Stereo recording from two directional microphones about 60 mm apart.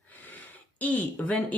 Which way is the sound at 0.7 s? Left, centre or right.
Left.